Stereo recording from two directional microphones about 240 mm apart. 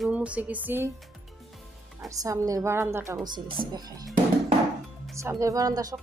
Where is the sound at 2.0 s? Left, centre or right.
Centre.